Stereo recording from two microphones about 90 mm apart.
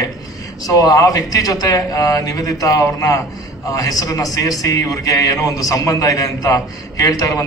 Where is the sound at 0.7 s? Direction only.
40° left (ahead or behind).